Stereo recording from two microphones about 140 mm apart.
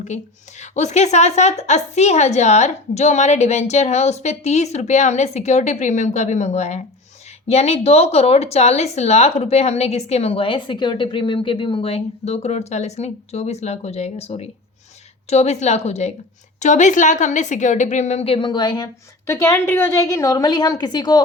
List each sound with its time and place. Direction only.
0.6 s a woman's voice: 55° left (ahead or behind); by 21.2 s 30° left (ahead or behind)